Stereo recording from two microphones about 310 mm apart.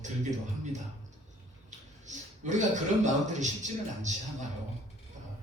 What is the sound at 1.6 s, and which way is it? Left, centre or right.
A man's voice, right.